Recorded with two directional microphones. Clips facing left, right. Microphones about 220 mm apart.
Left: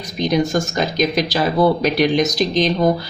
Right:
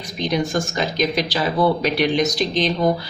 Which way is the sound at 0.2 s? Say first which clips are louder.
Left 4 dB; 45° left (ahead or behind).